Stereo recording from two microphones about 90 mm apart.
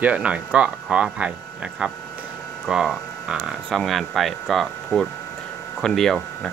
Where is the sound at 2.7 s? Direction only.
5° right (ahead or behind).